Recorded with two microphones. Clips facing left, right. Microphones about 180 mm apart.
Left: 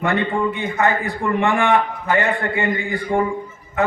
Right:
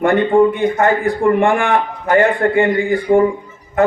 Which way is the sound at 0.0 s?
50° right (ahead or behind).